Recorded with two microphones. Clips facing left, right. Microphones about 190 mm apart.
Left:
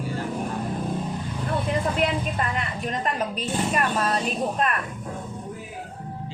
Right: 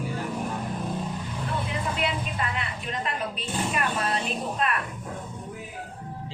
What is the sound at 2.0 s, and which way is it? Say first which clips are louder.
A woman's voice: left 4 dB; 45° left (ahead or behind).